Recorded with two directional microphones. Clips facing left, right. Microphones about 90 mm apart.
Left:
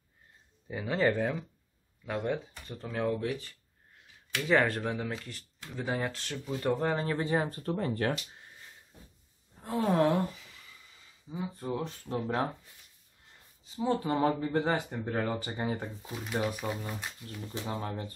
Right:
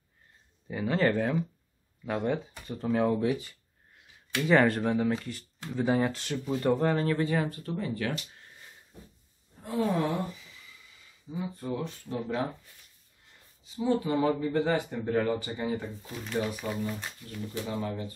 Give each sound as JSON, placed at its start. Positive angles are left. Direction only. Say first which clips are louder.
{"t": 0.7, "sound": "speech", "louder": "right 2 dB", "side_deg": 5}
{"t": 6.6, "sound": "speech", "louder": "right 3 dB", "side_deg": 10}
{"t": 9.6, "sound": "sigh", "louder": "left 1 dB", "side_deg": 45}
{"t": 11.8, "sound": "speech", "louder": "even", "side_deg": 40}
{"t": 13.7, "sound": "speech", "louder": "right 2 dB", "side_deg": 35}
{"t": 16.1, "sound": "speech", "louder": "right 1 dB", "side_deg": 10}
{"t": 17.6, "sound": "speech", "louder": "right 1 dB", "side_deg": 40}